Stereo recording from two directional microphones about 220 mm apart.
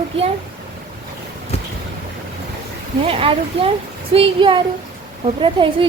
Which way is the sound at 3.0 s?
25° right (ahead or behind).